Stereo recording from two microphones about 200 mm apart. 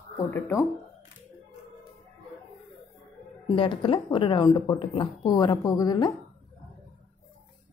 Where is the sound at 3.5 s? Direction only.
25° left (ahead or behind).